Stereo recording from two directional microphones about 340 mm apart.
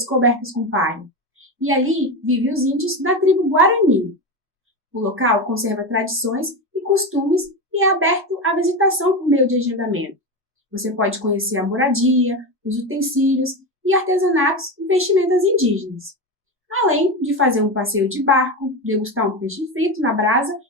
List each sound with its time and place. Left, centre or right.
0.2 s speech: right
2.2 s speech: right
5.1 s speech: right